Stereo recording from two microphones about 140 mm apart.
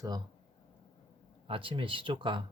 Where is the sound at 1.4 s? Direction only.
40° right (ahead or behind).